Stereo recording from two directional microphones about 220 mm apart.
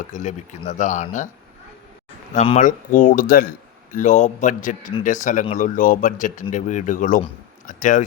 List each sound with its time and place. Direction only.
0.1 s speech: 35° left (ahead or behind)
2.3 s speech: 30° left (ahead or behind)